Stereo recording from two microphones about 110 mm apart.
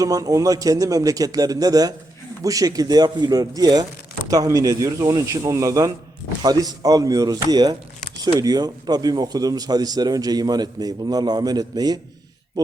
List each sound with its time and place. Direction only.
0.0 s speech: 30° right (ahead or behind)